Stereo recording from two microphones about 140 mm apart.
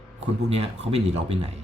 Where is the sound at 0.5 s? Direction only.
50° right (ahead or behind).